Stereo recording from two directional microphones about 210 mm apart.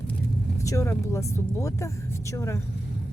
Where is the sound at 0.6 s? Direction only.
15° left (ahead or behind).